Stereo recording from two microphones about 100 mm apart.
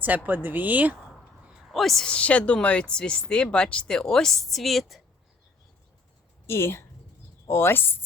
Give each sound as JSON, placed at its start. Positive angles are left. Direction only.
{"t": 0.3, "sound": "speech", "side_deg": -20}
{"t": 1.7, "sound": "speech", "side_deg": 5}
{"t": 6.5, "sound": "speech", "side_deg": 25}